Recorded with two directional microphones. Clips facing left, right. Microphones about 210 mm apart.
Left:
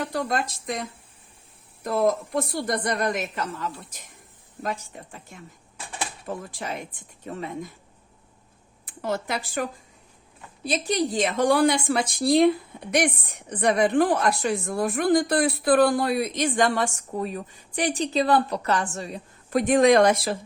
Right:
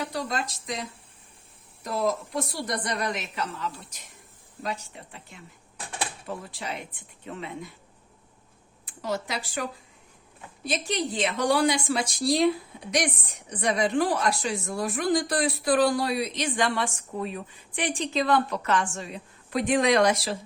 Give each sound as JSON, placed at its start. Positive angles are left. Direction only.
{"t": 0.0, "sound": "a woman's voice", "side_deg": 50}
{"t": 8.9, "sound": "a woman's voice", "side_deg": 55}
{"t": 10.6, "sound": "a woman's voice", "side_deg": 35}